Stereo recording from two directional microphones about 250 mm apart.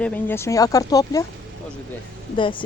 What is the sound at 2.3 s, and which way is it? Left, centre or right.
Speech, centre.